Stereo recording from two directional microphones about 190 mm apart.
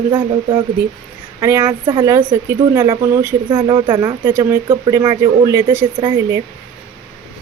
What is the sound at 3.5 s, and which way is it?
Speech, 25° right (ahead or behind).